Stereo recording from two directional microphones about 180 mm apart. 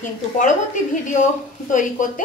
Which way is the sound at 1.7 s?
45° left (ahead or behind).